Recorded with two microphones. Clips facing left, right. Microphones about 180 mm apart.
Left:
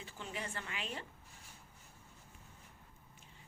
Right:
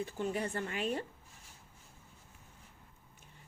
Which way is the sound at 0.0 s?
45° right (ahead or behind).